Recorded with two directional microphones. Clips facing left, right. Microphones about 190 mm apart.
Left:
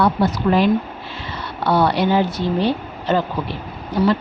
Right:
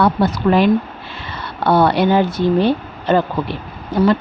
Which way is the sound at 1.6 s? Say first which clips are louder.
Right 3 dB; 55° right (ahead or behind).